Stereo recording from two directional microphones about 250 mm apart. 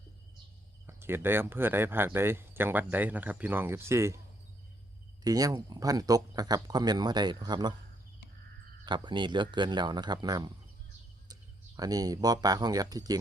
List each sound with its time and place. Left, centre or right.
0.9 s speech: centre
5.2 s speech: centre
8.8 s speech: centre
11.8 s speech: centre